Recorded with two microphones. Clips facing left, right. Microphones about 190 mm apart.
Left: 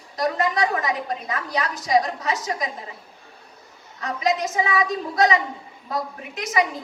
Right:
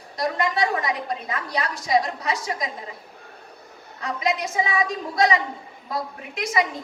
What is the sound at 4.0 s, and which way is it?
Speech, 35° left (ahead or behind).